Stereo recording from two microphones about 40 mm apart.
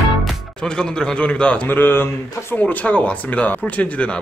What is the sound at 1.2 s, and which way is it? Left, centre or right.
Speech, left.